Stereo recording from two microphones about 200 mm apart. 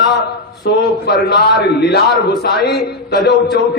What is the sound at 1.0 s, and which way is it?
A man's voice, 55° left (ahead or behind).